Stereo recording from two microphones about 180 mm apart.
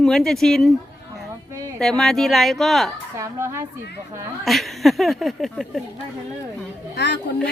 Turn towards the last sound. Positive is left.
turn(degrees=70)  # may be behind; listen again after turning